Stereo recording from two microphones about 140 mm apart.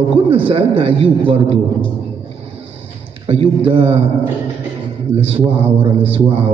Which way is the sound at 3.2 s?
40° right (ahead or behind).